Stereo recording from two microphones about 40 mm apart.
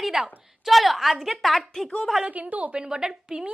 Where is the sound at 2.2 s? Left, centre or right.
Right.